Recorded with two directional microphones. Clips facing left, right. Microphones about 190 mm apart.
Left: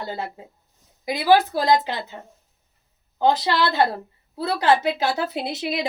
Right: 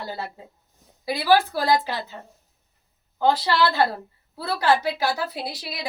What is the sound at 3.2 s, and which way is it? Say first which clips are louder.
A woman's voice: left 1 dB; 20° left (ahead or behind).